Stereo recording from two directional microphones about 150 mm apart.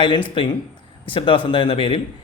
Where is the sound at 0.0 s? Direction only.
35° left (ahead or behind).